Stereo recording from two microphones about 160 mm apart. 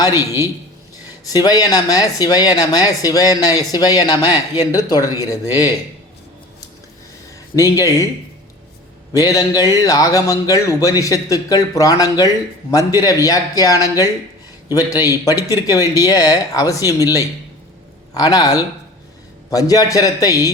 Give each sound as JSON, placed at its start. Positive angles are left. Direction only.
{"t": 0.0, "sound": "a man's voice", "side_deg": 25}
{"t": 1.3, "sound": "speech", "side_deg": 25}
{"t": 7.5, "sound": "speech", "side_deg": 20}
{"t": 9.1, "sound": "speech", "side_deg": 20}